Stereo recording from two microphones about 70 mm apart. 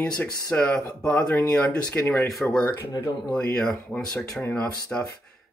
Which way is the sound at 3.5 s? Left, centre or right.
Centre.